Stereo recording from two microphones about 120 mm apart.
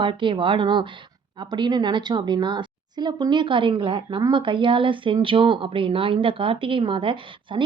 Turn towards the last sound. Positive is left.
turn(degrees=-45)  # may be behind; listen again after turning